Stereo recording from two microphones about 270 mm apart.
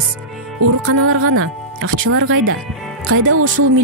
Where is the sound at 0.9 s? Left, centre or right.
Right.